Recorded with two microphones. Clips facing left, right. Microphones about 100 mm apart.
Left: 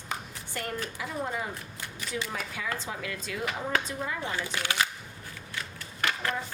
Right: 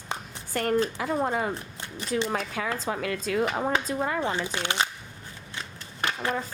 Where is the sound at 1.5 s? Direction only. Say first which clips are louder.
Right 5 dB; 30° right (ahead or behind).